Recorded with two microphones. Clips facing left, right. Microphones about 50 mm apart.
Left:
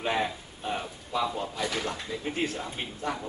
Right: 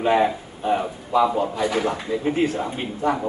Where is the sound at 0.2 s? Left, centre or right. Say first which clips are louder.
Right 10 dB; right.